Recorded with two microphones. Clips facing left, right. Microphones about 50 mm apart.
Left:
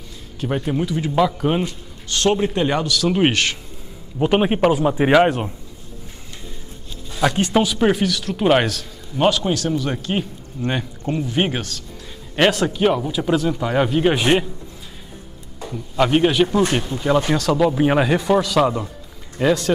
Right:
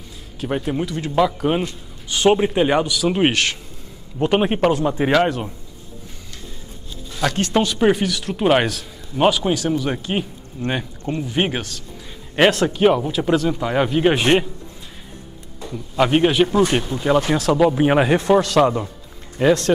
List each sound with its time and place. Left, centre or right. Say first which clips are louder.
0.4 s a man's voice: left 1 dB; centre
7.2 s a man's voice: left 2 dB; centre
16.0 s a man's voice: even; centre
18.2 s a man's voice: right 2 dB; centre
19.4 s speech: right 2 dB; centre